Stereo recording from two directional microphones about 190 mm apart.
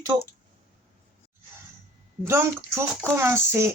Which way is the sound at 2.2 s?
15° right (ahead or behind).